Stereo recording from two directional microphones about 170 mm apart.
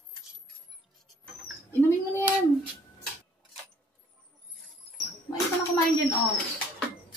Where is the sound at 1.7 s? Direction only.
10° left (ahead or behind).